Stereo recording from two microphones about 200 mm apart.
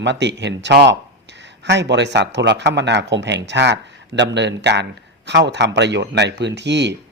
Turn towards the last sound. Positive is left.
turn(degrees=-60)  # may be behind; listen again after turning